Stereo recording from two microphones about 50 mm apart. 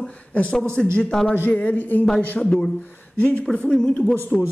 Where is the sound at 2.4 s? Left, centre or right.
Centre.